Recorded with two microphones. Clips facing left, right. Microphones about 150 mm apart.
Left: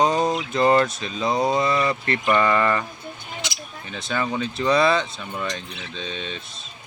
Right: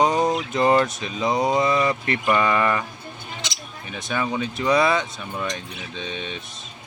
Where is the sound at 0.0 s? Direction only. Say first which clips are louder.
Even; 15° right (ahead or behind).